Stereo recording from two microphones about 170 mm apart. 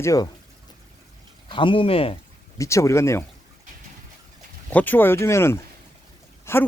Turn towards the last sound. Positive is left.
turn(degrees=15)  # may be behind; listen again after turning